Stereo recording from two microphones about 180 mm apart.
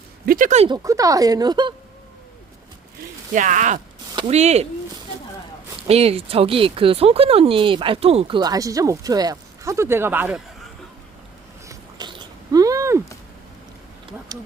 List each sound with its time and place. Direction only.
0.3 s speech: 45° right (ahead or behind)
0.7 s speech: 20° right (ahead or behind)
3.3 s speech: 45° right (ahead or behind)
5.9 s speech: 35° right (ahead or behind)
8.4 s speech: 20° right (ahead or behind)
11.7 s a sound: 25° right (ahead or behind)
14.3 s speech: 20° right (ahead or behind)